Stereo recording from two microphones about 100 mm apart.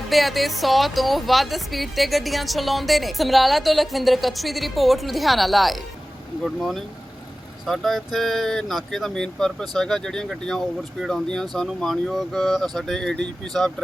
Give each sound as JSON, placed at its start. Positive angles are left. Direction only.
{"t": 0.1, "sound": "speech", "side_deg": 0}